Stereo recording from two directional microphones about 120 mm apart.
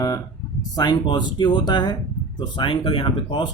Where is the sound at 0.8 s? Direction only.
40° left (ahead or behind).